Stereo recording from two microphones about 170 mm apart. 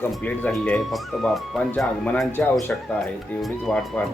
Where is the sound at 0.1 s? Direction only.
10° left (ahead or behind).